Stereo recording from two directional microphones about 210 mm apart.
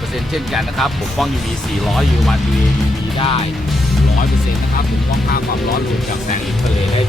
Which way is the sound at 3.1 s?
25° left (ahead or behind).